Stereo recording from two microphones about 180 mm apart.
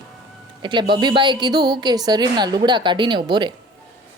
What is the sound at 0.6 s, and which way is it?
Speech, 25° right (ahead or behind).